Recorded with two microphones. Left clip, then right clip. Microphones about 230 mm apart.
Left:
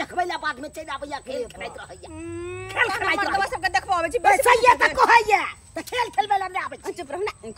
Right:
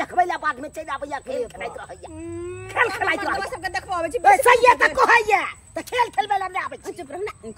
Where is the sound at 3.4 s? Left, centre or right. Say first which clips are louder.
Left 4 dB; centre.